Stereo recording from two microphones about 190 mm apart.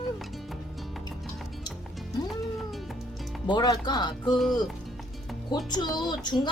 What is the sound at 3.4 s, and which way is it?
Speech, 25° left (ahead or behind).